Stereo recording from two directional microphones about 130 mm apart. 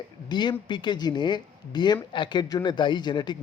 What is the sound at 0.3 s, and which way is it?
Speech, 35° left (ahead or behind).